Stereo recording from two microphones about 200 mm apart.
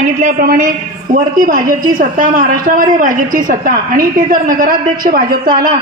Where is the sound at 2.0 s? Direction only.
40° right (ahead or behind).